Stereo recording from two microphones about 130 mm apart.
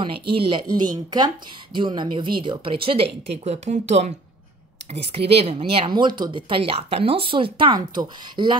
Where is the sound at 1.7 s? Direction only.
40° right (ahead or behind).